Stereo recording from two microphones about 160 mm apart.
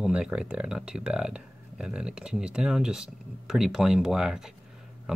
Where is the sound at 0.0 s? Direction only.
5° right (ahead or behind).